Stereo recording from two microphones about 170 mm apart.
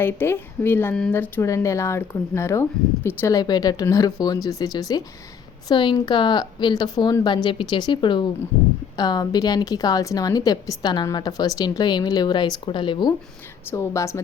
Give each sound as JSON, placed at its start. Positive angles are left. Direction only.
{"t": 0.0, "sound": "a woman's voice", "side_deg": 10}
{"t": 13.7, "sound": "speech", "side_deg": 15}